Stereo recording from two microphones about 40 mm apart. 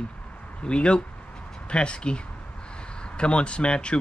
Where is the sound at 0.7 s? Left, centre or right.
Left.